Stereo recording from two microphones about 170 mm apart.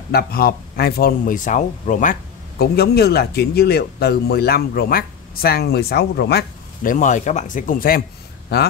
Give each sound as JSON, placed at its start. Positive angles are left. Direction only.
{"t": 0.1, "sound": "speech", "side_deg": 60}
{"t": 2.6, "sound": "a man's voice", "side_deg": 65}
{"t": 6.8, "sound": "speech", "side_deg": 50}
{"t": 8.5, "sound": "a man's voice", "side_deg": 70}